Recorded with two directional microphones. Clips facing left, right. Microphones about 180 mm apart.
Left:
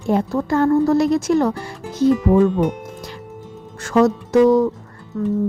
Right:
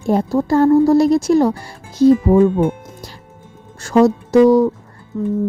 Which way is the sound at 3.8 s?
30° right (ahead or behind).